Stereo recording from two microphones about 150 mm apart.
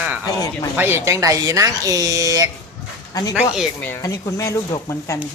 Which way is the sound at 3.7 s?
15° left (ahead or behind).